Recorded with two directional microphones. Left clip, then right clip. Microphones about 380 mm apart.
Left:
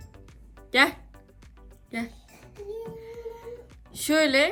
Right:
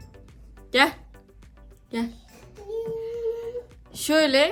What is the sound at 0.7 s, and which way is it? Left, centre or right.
Speech, centre.